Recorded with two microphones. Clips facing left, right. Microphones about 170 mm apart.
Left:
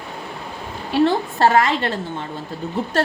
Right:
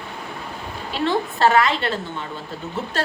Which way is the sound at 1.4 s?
40° left (ahead or behind).